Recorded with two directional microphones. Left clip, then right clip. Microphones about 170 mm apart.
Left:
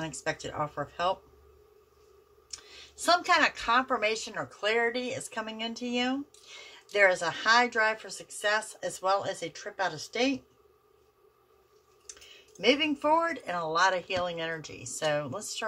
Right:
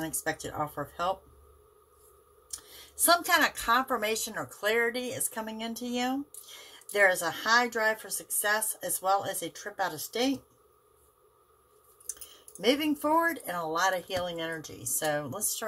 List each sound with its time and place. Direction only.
0.0 s speech: 5° right (ahead or behind)
3.0 s speech: 5° right (ahead or behind)
12.5 s speech: 5° right (ahead or behind)